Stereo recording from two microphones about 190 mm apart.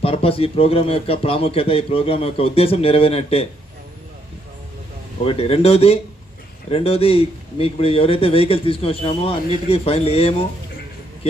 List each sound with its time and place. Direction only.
0.0 s a man's voice: 30° left (ahead or behind)
5.2 s a man's voice: 30° left (ahead or behind)